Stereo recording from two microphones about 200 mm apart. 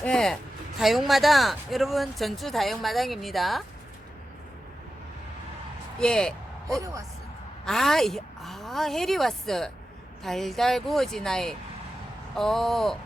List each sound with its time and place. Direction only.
0.0 s speech: 5° left (ahead or behind)
6.0 s speech: 5° left (ahead or behind)
6.7 s a woman's voice: 15° right (ahead or behind)
7.6 s speech: centre (ahead or behind)